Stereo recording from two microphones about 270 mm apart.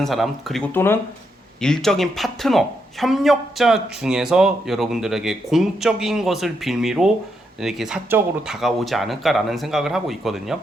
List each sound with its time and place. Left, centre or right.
0.0 s speech: centre